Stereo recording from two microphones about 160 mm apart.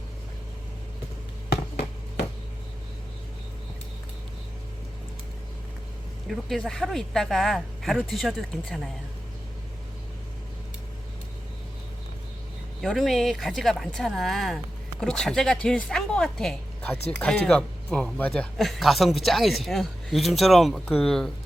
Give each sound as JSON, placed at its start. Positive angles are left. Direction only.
{"t": 1.5, "sound": "a sound", "side_deg": 90}
{"t": 6.2, "sound": "speech", "side_deg": 0}
{"t": 12.8, "sound": "speech", "side_deg": 0}